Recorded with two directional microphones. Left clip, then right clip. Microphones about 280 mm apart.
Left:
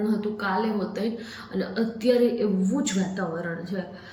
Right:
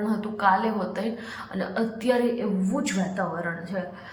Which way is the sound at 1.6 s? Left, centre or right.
Centre.